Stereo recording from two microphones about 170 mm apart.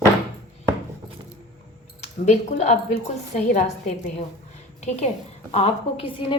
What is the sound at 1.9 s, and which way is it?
Speech, 40° left (ahead or behind).